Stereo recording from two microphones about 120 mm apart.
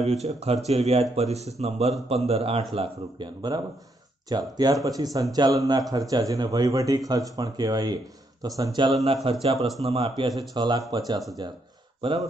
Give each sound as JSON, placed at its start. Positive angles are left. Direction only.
{"t": 0.0, "sound": "speech", "side_deg": -65}
{"t": 4.3, "sound": "speech", "side_deg": -35}
{"t": 9.0, "sound": "speech", "side_deg": -55}
{"t": 10.5, "sound": "speech", "side_deg": -35}